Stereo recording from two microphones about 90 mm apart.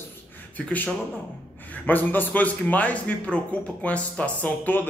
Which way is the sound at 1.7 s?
20° left (ahead or behind).